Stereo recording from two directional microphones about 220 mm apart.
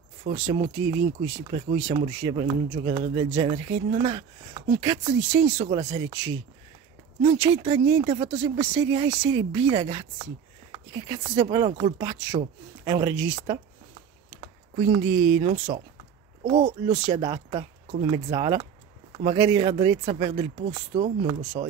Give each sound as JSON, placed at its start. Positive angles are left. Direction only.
{"t": 0.2, "sound": "speech", "side_deg": -30}
{"t": 0.7, "sound": "speech", "side_deg": -55}
{"t": 1.9, "sound": "speech", "side_deg": -20}
{"t": 14.9, "sound": "speech", "side_deg": -25}